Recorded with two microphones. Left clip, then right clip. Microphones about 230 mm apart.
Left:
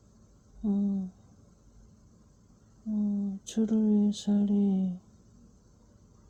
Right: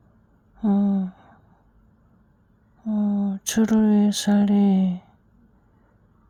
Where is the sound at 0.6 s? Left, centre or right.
Right.